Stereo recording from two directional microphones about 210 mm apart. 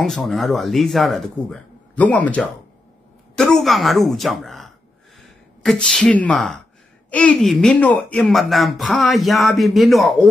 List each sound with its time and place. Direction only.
0.0 s speech: centre (ahead or behind)